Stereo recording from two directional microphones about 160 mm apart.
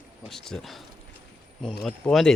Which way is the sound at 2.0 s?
5° left (ahead or behind).